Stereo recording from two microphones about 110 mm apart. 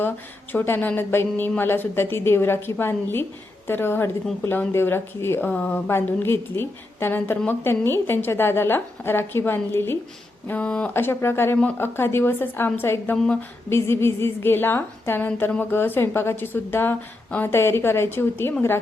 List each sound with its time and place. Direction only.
0.5 s a woman's voice: 20° left (ahead or behind)